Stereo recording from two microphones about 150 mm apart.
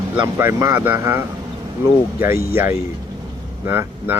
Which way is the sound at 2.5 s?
15° right (ahead or behind).